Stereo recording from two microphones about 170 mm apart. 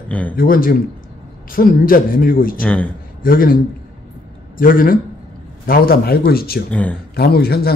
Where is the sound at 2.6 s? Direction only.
5° left (ahead or behind).